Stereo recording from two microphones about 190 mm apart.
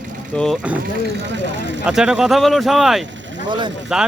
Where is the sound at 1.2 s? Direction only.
70° right (ahead or behind).